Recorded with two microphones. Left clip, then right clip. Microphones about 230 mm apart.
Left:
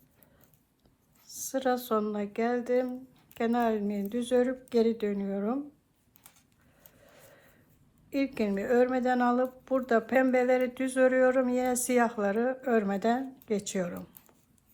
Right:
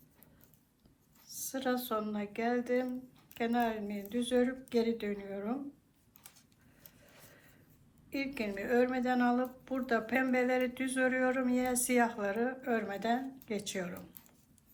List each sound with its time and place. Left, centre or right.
1.4 s a woman's voice: left
8.1 s a woman's voice: left